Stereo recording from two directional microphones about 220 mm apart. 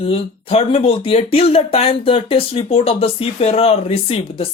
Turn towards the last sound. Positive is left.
turn(degrees=25)  # may be behind; listen again after turning